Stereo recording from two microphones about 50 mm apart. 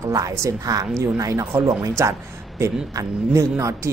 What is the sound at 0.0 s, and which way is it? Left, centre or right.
A woman's voice, right.